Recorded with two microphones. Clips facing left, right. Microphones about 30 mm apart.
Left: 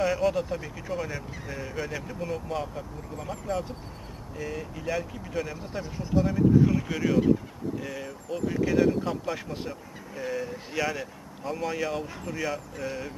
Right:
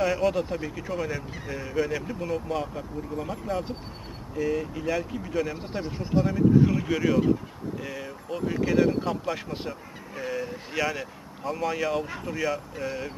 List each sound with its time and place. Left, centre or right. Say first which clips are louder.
0.0 s speech: right 1 dB; centre
5.7 s speech: right 2 dB; right
6.2 s speech: right 1 dB; centre